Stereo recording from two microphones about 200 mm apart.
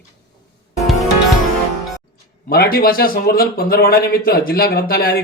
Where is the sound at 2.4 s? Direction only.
50° left (ahead or behind).